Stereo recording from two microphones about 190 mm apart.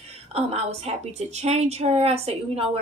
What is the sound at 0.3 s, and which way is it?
A woman's voice, 35° right (ahead or behind).